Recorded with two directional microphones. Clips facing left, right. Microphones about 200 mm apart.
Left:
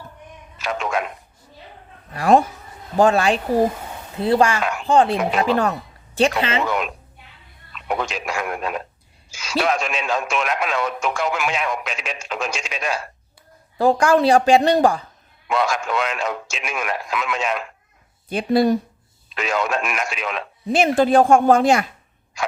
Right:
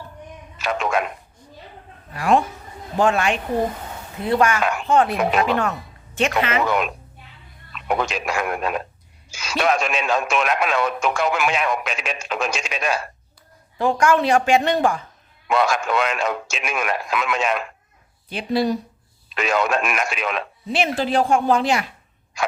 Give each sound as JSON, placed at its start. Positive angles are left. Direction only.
{"t": 0.6, "sound": "speech", "side_deg": -60}
{"t": 2.1, "sound": "speech", "side_deg": 40}
{"t": 6.7, "sound": "speech", "side_deg": -60}
{"t": 13.7, "sound": "speech", "side_deg": 35}
{"t": 15.4, "sound": "speech", "side_deg": -60}
{"t": 18.3, "sound": "speech", "side_deg": 50}
{"t": 19.3, "sound": "speech", "side_deg": -60}
{"t": 20.7, "sound": "speech", "side_deg": 50}